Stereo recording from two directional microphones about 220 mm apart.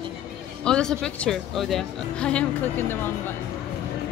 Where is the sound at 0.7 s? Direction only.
5° left (ahead or behind).